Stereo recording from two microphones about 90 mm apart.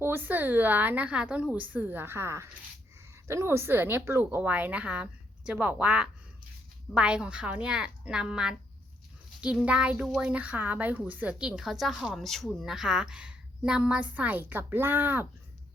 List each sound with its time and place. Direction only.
0.0 s a woman's voice: 25° right (ahead or behind)